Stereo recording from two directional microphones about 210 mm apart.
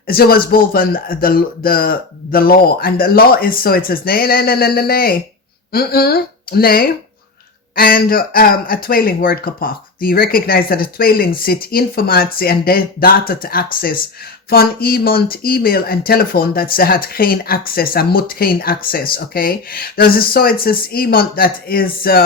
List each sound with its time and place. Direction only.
0.1 s speech: 45° left (ahead or behind)